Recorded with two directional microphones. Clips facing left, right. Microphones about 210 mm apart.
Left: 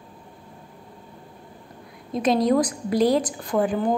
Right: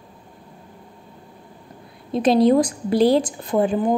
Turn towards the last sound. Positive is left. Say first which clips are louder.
# right 3 dB
turn(degrees=-20)  # may be behind; listen again after turning